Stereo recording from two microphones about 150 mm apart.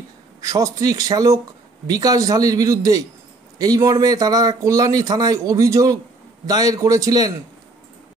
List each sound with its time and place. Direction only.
0.4 s speech: 20° right (ahead or behind)